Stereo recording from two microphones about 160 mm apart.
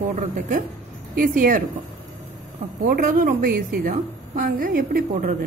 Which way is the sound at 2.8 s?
60° right (ahead or behind).